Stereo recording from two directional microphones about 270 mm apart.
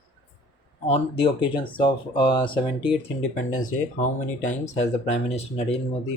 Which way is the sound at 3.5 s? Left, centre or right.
Left.